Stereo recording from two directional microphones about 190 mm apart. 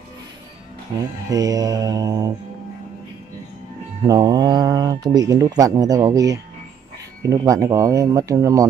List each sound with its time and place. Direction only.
0.9 s speech: 20° right (ahead or behind)
4.0 s speech: 20° right (ahead or behind)